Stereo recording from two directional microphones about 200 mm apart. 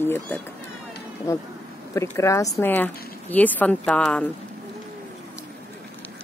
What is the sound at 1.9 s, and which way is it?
Speech, 15° left (ahead or behind).